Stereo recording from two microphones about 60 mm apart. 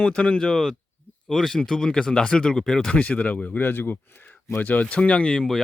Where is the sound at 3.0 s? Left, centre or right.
Left.